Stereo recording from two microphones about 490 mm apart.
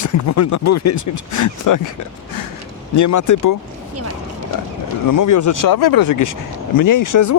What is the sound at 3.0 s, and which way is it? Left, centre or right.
Speech, left.